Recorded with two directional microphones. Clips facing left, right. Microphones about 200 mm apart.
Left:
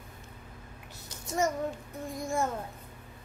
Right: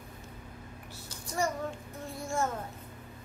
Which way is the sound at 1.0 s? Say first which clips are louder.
Left 3 dB; 20° left (ahead or behind).